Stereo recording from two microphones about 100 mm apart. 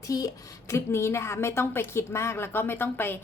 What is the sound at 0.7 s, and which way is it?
A woman's voice, 25° left (ahead or behind).